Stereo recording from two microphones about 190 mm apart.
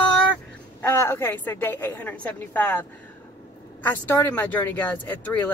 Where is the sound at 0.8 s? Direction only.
10° left (ahead or behind).